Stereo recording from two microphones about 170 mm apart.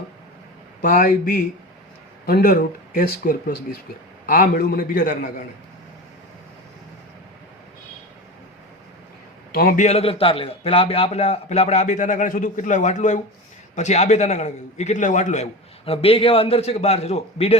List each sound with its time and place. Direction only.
0.8 s a man's voice: 50° left (ahead or behind)
9.5 s a man's voice: 60° left (ahead or behind); by 17.6 s 35° left (ahead or behind)